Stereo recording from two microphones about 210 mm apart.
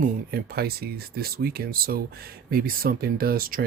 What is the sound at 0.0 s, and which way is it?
Speech, 45° right (ahead or behind).